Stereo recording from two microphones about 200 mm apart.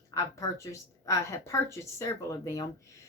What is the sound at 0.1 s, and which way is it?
A woman's voice, 15° left (ahead or behind).